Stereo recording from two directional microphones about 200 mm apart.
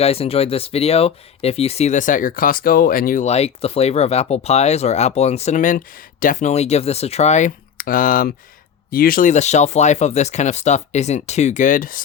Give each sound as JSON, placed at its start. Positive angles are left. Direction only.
{"t": 0.0, "sound": "speech", "side_deg": 30}